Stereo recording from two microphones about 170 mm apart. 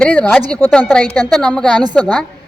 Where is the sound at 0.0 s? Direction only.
5° left (ahead or behind).